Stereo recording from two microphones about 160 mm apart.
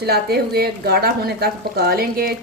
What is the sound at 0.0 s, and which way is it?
Speech, 80° right.